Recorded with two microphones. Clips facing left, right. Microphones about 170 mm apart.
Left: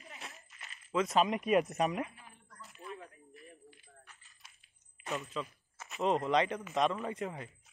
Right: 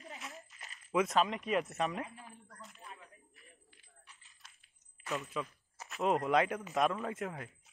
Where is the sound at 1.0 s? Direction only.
10° left (ahead or behind).